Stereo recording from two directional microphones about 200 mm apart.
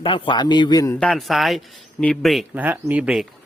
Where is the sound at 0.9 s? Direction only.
5° left (ahead or behind).